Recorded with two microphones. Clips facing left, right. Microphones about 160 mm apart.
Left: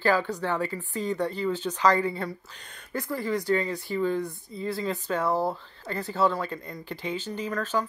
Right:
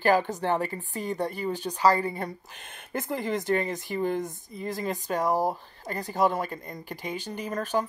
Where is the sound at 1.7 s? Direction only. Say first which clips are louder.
Left 2 dB; 35° right (ahead or behind).